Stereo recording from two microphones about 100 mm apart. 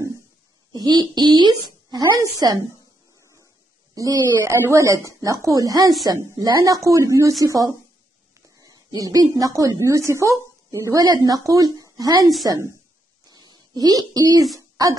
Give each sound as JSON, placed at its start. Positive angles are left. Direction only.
{"t": 0.7, "sound": "a woman's voice", "side_deg": -45}
{"t": 3.9, "sound": "a woman's voice", "side_deg": -30}
{"t": 13.3, "sound": "a sound", "side_deg": -40}